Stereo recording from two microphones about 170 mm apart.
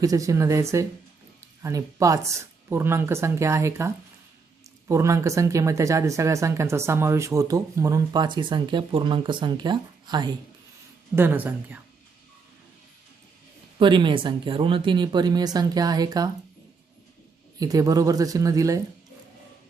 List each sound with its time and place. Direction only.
0.0 s speech: 20° right (ahead or behind)
11.1 s speech: 10° right (ahead or behind)
13.7 s speech: 30° right (ahead or behind)
17.6 s speech: 20° right (ahead or behind)